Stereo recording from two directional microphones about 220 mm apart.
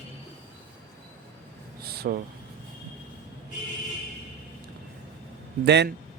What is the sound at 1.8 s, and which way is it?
Speech, 45° right (ahead or behind).